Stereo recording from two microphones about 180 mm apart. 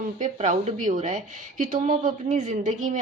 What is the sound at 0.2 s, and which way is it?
Speech, 45° right (ahead or behind).